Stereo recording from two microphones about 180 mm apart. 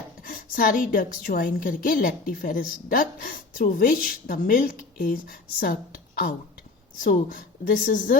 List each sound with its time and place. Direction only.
0.2 s a woman's voice: 50° left (ahead or behind)